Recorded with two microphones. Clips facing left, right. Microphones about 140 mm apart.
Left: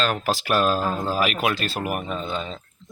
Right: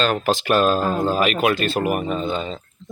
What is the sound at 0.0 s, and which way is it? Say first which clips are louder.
Speech: right 4 dB; 5° left (ahead or behind).